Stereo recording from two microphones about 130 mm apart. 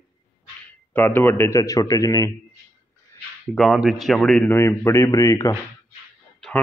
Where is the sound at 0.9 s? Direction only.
15° left (ahead or behind).